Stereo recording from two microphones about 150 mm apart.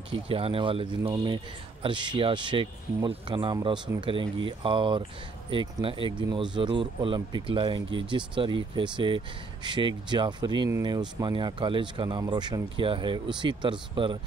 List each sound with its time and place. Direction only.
0.3 s speech: 40° right (ahead or behind)